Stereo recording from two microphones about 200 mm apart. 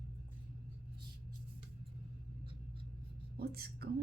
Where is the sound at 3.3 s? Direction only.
50° right (ahead or behind).